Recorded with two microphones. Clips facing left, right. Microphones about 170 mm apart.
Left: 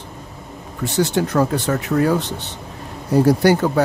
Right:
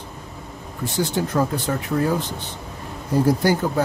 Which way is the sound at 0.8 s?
75° left (ahead or behind).